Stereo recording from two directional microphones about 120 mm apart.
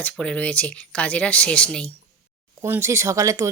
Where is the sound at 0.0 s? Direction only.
10° left (ahead or behind).